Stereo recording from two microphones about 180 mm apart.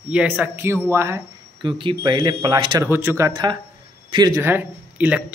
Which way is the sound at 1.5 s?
25° right (ahead or behind).